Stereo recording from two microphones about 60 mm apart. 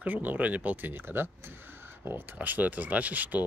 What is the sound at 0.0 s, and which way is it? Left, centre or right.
Speech, right.